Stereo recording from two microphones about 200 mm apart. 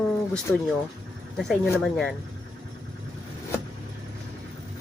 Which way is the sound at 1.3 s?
Centre (ahead or behind).